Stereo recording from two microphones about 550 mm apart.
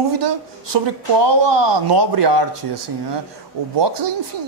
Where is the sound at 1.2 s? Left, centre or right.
Right.